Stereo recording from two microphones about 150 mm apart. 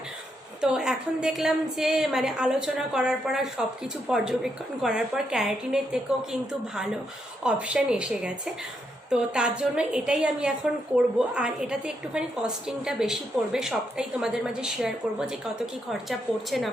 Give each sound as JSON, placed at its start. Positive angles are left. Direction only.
{"t": 0.6, "sound": "a woman's voice", "side_deg": -5}
{"t": 7.4, "sound": "a woman's voice", "side_deg": -5}